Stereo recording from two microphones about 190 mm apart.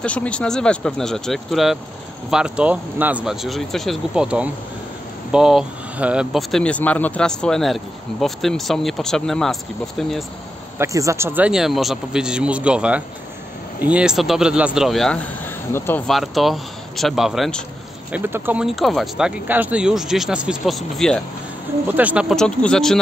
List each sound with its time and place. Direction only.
0.0 s speech: 5° left (ahead or behind)
10.8 s speech: 15° right (ahead or behind); by 16.0 s 10° left (ahead or behind)
16.1 s speech: centre (ahead or behind)
18.1 s speech: 10° right (ahead or behind)